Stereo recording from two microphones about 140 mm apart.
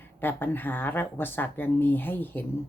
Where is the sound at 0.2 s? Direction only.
15° left (ahead or behind).